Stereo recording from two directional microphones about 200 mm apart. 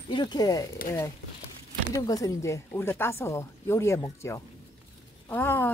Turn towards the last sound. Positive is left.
turn(degrees=10)  # may be behind; listen again after turning